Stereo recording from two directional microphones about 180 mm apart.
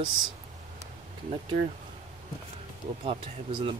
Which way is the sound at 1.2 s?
35° right (ahead or behind).